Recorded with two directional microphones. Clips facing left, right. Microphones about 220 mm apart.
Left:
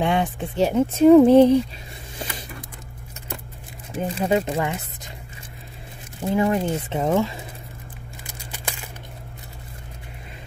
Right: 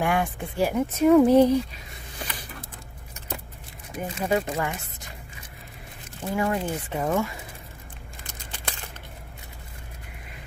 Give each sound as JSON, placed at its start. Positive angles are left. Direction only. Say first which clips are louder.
{"t": 0.0, "sound": "speech", "louder": "left 3 dB", "side_deg": 20}
{"t": 3.9, "sound": "speech", "louder": "left 4 dB", "side_deg": 25}
{"t": 6.3, "sound": "speech", "louder": "left 5 dB", "side_deg": 20}